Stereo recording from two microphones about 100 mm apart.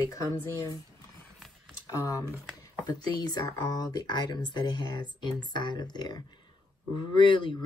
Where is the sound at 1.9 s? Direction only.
35° left (ahead or behind).